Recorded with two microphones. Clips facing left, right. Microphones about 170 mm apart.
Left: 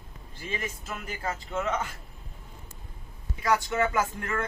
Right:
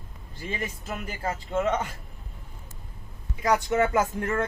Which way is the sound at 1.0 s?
30° right (ahead or behind).